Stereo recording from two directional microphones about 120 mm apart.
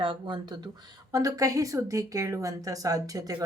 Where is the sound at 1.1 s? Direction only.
30° right (ahead or behind).